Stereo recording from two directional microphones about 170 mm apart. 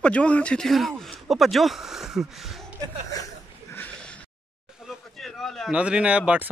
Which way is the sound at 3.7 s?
10° left (ahead or behind).